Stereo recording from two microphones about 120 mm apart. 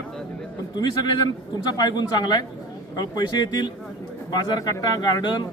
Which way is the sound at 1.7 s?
35° left (ahead or behind).